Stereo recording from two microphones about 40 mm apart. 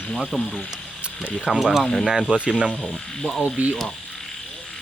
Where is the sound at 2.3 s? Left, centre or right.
Centre.